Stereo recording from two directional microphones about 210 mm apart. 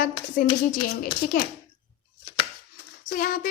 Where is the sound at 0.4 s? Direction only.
40° left (ahead or behind).